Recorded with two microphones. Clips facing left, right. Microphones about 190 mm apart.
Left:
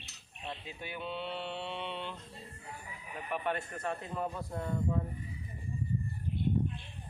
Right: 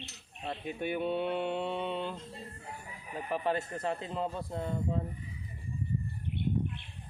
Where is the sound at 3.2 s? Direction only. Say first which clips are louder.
Right 3 dB; 30° right (ahead or behind).